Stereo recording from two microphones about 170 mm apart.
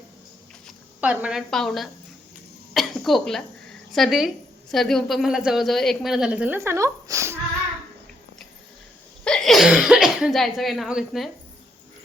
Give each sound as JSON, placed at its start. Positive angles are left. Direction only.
{"t": 1.0, "sound": "a woman's voice", "side_deg": -10}
{"t": 9.2, "sound": "speech", "side_deg": 5}